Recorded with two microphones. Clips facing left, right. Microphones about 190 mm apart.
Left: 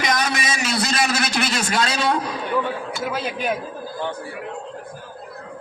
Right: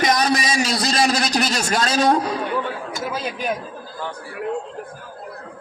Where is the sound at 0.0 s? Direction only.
35° right (ahead or behind).